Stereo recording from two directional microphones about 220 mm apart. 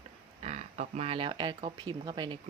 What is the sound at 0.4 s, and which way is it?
Speech, 30° right (ahead or behind).